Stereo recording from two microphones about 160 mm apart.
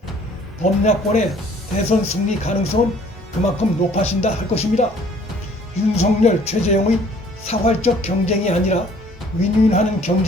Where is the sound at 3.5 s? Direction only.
45° left (ahead or behind).